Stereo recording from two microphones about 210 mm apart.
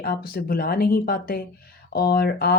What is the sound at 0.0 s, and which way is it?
Speech, 45° left (ahead or behind).